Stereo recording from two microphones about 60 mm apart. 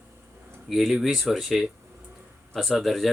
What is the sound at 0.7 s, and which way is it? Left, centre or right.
Speech, centre.